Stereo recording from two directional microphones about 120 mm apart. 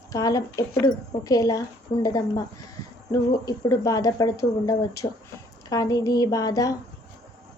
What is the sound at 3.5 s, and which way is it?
A woman's voice, 30° left (ahead or behind).